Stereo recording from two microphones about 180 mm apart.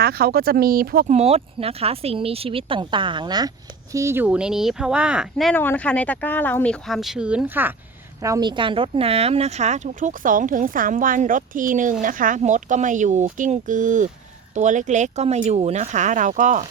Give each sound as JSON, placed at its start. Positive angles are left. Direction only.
{"t": 0.0, "sound": "speech", "side_deg": -55}
{"t": 1.1, "sound": "speech", "side_deg": -35}
{"t": 5.5, "sound": "speech", "side_deg": 10}
{"t": 8.2, "sound": "speech", "side_deg": -20}